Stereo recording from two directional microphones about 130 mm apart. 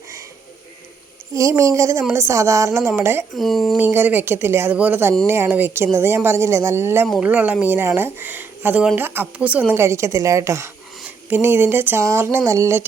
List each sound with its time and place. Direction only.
1.3 s speech: 25° right (ahead or behind)
3.3 s speech: centre (ahead or behind)
3.8 s speech: 15° right (ahead or behind)